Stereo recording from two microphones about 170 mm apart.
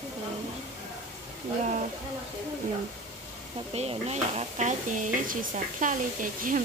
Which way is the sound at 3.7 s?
35° right (ahead or behind).